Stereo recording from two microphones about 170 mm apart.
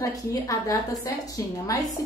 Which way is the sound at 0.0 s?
20° left (ahead or behind).